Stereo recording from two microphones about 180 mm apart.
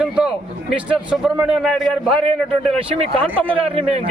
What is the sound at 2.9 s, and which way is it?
Speech, 35° right (ahead or behind).